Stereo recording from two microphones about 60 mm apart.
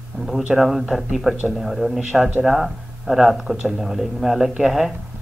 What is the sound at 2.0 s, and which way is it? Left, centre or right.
Speech, centre.